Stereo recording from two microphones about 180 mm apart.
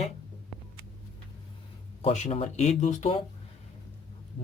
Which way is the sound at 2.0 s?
35° left (ahead or behind).